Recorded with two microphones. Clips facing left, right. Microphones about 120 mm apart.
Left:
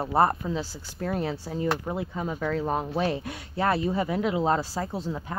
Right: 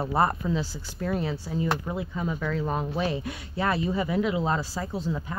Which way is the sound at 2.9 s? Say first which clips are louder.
Left 1 dB; 50° left (ahead or behind).